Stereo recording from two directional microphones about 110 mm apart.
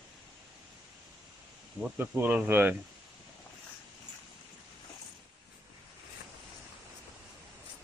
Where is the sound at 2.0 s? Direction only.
20° right (ahead or behind).